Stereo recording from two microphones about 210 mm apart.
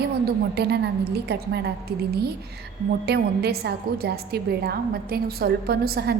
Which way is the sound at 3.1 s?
50° right (ahead or behind).